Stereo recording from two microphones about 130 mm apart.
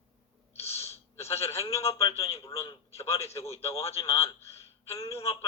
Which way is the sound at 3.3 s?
50° left (ahead or behind).